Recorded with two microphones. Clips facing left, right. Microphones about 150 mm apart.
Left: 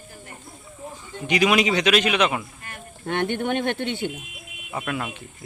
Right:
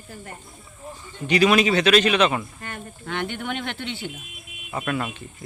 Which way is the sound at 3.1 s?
55° left (ahead or behind).